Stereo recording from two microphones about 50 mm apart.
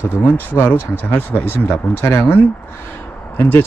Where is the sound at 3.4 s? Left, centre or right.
Left.